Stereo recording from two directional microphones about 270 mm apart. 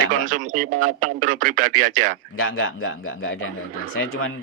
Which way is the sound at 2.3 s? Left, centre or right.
Left.